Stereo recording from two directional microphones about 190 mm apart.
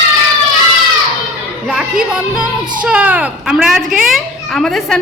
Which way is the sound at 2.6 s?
25° right (ahead or behind).